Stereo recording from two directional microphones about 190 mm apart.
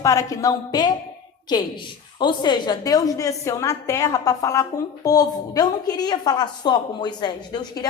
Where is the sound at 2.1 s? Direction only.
25° left (ahead or behind).